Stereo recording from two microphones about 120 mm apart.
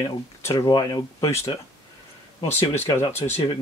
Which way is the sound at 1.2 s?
25° left (ahead or behind).